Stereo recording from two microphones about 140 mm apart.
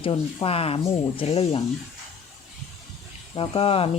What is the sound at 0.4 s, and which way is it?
Speech, 45° left (ahead or behind).